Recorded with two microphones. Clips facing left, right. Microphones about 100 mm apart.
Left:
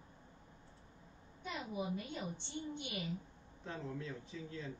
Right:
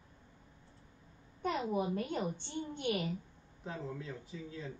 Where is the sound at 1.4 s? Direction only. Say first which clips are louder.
Right 8 dB; 60° right (ahead or behind).